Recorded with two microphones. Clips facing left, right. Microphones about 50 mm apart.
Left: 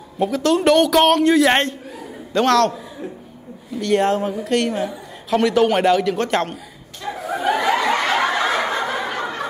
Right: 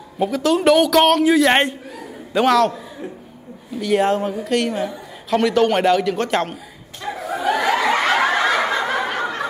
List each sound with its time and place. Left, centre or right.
0.2 s a woman's voice: centre
7.0 s snicker: centre
7.6 s snicker: right
8.6 s snicker: right